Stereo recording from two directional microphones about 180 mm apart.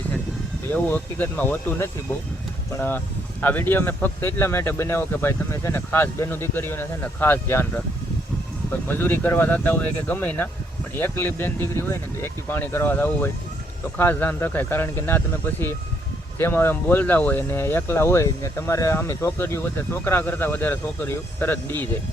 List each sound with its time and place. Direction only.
0.7 s speech: 10° left (ahead or behind)
8.9 s speech: 10° left (ahead or behind)
16.4 s speech: 15° left (ahead or behind)